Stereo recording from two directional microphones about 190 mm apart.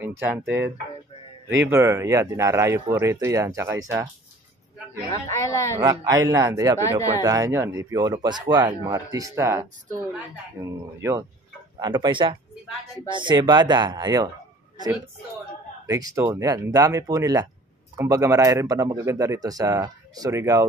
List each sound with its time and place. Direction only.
0.0 s speech: 10° right (ahead or behind)
1.7 s speech: 15° right (ahead or behind)
5.1 s a woman's voice: 15° left (ahead or behind)
5.8 s speech: 20° right (ahead or behind)
16.2 s speech: 15° right (ahead or behind)